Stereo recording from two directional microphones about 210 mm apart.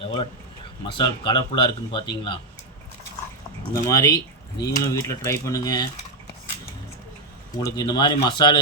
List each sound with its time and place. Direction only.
0.0 s a sound: 25° left (ahead or behind)
0.9 s speech: 25° left (ahead or behind)
3.7 s speech: 15° left (ahead or behind)
7.5 s speech: 20° left (ahead or behind)